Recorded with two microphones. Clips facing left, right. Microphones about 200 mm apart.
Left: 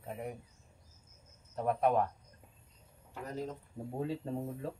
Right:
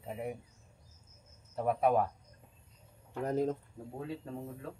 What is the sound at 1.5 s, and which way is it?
Speech, 5° right (ahead or behind).